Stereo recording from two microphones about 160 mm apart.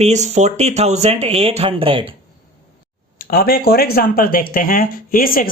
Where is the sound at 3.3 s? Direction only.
70° left (ahead or behind).